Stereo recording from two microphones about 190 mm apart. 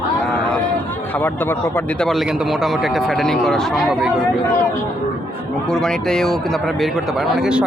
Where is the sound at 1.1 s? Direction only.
10° left (ahead or behind).